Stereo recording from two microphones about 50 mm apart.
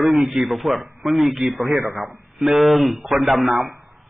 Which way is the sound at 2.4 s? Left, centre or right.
Centre.